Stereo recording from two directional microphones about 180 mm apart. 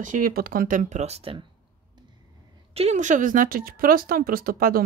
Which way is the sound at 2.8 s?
40° right (ahead or behind).